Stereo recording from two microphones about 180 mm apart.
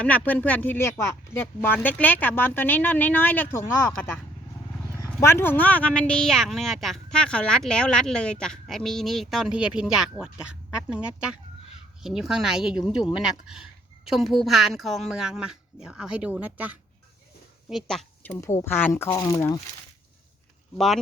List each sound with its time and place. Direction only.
0.0 s speech: 10° left (ahead or behind)
5.2 s speech: 10° left (ahead or behind); by 13.1 s 5° right (ahead or behind)
14.1 s a woman's voice: centre (ahead or behind)
18.3 s speech: 15° left (ahead or behind)
20.7 s speech: centre (ahead or behind)